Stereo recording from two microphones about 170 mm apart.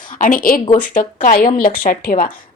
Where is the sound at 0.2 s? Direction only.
55° left (ahead or behind).